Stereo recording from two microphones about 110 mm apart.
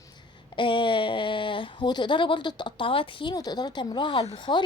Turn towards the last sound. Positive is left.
turn(degrees=50)  # may be behind; listen again after turning